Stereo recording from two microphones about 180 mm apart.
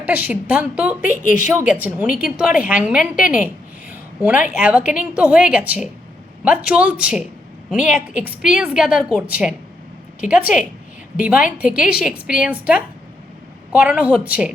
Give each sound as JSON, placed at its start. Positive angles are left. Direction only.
{"t": 0.0, "sound": "a woman's voice", "side_deg": -10}
{"t": 1.2, "sound": "a woman's voice", "side_deg": 45}
{"t": 1.5, "sound": "a woman's voice", "side_deg": -10}